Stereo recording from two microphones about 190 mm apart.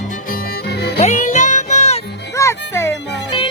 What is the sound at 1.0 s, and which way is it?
Music, 40° left (ahead or behind).